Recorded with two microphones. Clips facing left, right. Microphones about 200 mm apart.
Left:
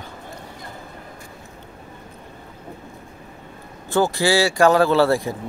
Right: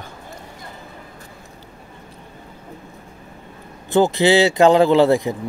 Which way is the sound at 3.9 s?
20° right (ahead or behind).